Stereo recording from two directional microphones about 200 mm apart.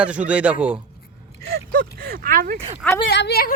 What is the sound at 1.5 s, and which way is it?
Speech, 50° right (ahead or behind).